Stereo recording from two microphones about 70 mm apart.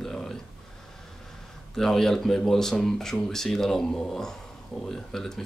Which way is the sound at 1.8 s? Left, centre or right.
Centre.